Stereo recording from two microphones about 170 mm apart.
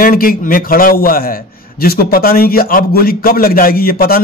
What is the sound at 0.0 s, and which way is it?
A man's voice, 55° left (ahead or behind).